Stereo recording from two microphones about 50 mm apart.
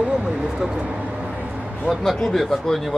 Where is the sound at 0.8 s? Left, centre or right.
Right.